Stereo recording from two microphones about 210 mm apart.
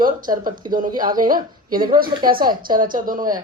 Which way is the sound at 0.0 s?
40° right (ahead or behind).